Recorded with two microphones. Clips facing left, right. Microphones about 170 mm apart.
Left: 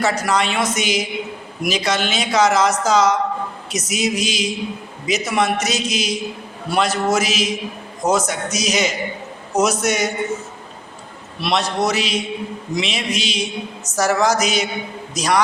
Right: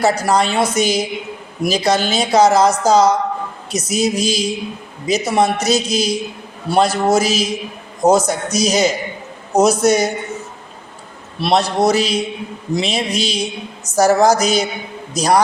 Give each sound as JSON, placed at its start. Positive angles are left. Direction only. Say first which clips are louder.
{"t": 0.0, "sound": "speech", "louder": "right 4 dB", "side_deg": -35}
{"t": 11.3, "sound": "a man's voice", "louder": "right 5 dB", "side_deg": -30}